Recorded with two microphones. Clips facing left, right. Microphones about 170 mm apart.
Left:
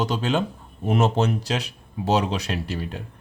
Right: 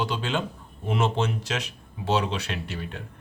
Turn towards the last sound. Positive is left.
turn(degrees=35)  # may be behind; listen again after turning